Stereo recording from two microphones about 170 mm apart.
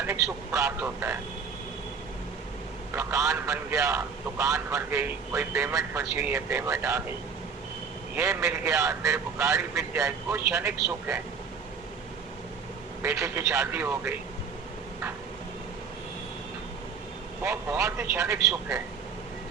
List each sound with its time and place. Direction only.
0.0 s a man's voice: 15° right (ahead or behind)
2.9 s a man's voice: 15° right (ahead or behind)
8.1 s a man's voice: 15° right (ahead or behind)
13.0 s a man's voice: 15° right (ahead or behind)
17.4 s a man's voice: 15° right (ahead or behind)